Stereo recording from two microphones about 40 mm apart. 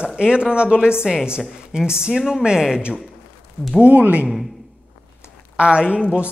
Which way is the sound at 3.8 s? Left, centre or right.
Right.